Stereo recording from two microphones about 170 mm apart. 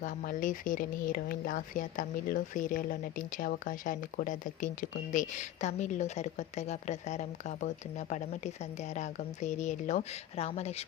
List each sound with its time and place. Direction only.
0.0 s speech: 55° left (ahead or behind); by 10.8 s 40° left (ahead or behind)